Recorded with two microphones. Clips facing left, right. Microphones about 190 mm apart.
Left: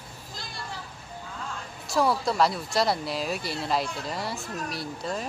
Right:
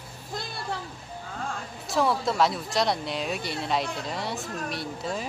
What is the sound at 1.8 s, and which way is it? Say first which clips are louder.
Speech: even; centre (ahead or behind).